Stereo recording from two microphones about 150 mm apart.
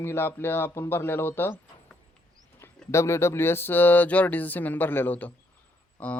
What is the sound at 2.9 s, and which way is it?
Speech, 20° left (ahead or behind).